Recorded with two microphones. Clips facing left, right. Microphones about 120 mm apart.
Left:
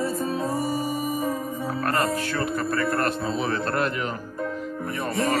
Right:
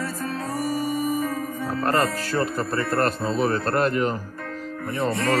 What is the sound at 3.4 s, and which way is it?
Speech, 45° right (ahead or behind).